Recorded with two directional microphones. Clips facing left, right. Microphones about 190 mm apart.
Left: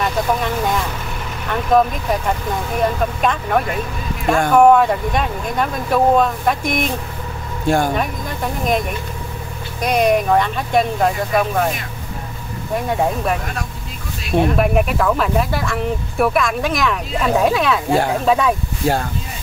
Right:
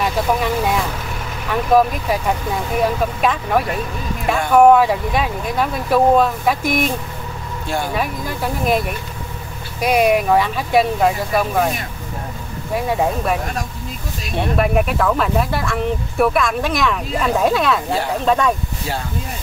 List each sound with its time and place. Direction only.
0.0 s speech: 5° right (ahead or behind)
7.6 s speech: 50° left (ahead or behind)
7.9 s speech: 5° right (ahead or behind)
12.7 s speech: 5° right (ahead or behind)
14.6 s speech: centre (ahead or behind)
18.8 s speech: 50° left (ahead or behind)